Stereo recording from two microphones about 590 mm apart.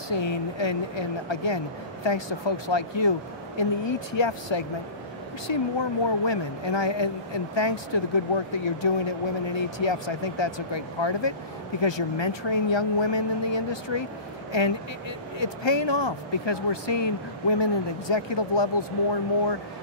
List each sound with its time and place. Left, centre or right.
0.1 s speech: left